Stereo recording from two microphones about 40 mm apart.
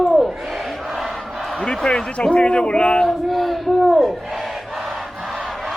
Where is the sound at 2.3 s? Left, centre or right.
Left.